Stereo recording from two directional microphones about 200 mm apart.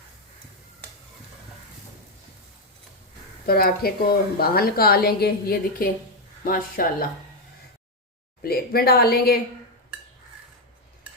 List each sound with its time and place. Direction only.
3.4 s a woman's voice: 50° left (ahead or behind)
8.4 s a woman's voice: 50° left (ahead or behind)